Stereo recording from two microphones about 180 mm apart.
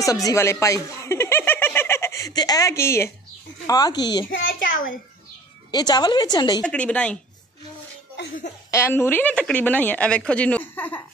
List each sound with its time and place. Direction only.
0.0 s chuckle: 20° left (ahead or behind)
3.6 s a woman's voice: 20° left (ahead or behind)
5.7 s a woman's voice: 20° left (ahead or behind)
6.6 s speech: 5° left (ahead or behind)
8.2 s speech: 70° left (ahead or behind)
8.6 s speech: 15° left (ahead or behind)